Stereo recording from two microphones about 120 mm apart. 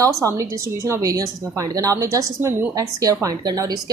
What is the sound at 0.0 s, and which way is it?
A woman's voice, 25° right (ahead or behind).